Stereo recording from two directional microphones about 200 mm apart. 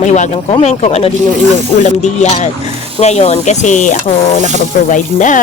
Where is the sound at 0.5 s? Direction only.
35° left (ahead or behind).